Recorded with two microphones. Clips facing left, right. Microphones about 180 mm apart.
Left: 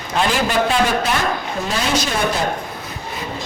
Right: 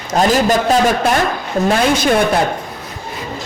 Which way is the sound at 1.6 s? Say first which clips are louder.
Right 7 dB; 55° right (ahead or behind).